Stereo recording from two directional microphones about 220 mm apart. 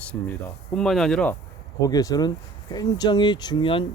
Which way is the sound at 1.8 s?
15° left (ahead or behind).